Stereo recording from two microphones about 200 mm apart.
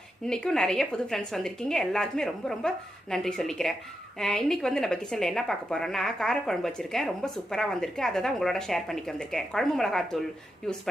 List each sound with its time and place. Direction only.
0.3 s a woman's voice: 5° left (ahead or behind)